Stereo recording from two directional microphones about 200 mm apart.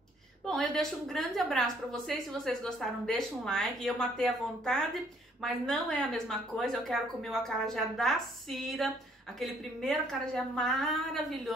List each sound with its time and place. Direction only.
0.5 s a woman's voice: centre (ahead or behind)